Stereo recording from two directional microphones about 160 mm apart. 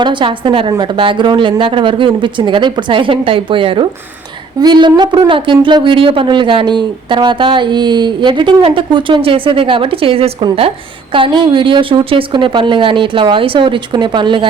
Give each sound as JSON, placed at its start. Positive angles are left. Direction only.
{"t": 0.0, "sound": "speech", "side_deg": -30}